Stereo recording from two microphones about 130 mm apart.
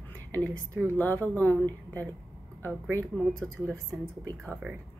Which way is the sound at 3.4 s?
10° left (ahead or behind).